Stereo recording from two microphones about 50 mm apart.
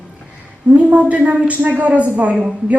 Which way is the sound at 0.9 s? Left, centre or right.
Right.